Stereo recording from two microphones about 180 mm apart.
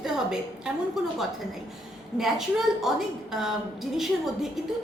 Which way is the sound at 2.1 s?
Centre (ahead or behind).